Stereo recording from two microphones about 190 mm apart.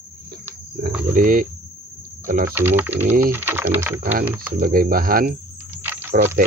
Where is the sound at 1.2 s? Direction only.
45° right (ahead or behind).